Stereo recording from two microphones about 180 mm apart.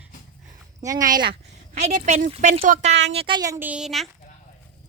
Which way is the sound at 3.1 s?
25° right (ahead or behind).